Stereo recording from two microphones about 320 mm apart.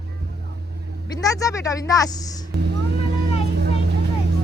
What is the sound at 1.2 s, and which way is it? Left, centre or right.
Speech, centre.